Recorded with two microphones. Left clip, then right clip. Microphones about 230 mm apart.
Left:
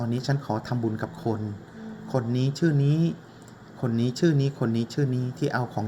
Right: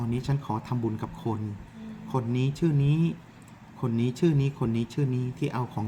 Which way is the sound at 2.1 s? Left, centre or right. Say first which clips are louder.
Left 2 dB; right.